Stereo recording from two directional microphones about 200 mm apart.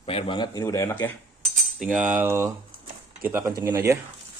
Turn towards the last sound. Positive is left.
turn(degrees=-15)  # may be behind; listen again after turning